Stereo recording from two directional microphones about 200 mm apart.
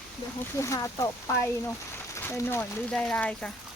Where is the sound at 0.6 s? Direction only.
15° left (ahead or behind).